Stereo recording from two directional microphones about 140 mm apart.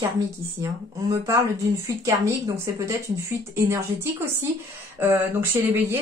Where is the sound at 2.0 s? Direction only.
20° right (ahead or behind).